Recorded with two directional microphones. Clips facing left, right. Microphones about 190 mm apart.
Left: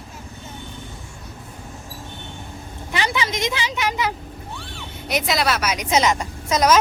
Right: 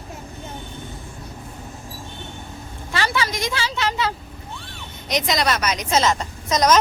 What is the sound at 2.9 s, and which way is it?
A woman's voice, 20° left (ahead or behind).